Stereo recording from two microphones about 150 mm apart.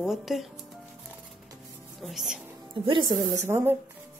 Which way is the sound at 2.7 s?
35° right (ahead or behind).